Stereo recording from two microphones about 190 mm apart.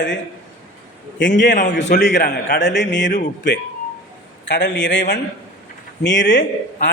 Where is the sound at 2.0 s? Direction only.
60° left (ahead or behind).